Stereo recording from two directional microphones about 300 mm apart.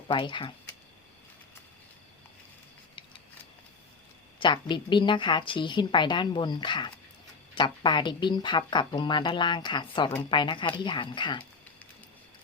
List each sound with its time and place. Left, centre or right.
0.1 s speech: centre
4.4 s a sound: centre
4.7 s speech: centre